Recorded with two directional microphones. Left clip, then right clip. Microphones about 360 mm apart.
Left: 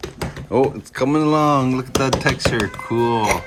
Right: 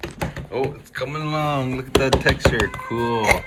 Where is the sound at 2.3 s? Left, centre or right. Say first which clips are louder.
Right 1 dB; right.